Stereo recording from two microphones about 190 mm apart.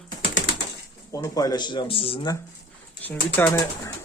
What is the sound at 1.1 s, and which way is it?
Speech, 15° left (ahead or behind).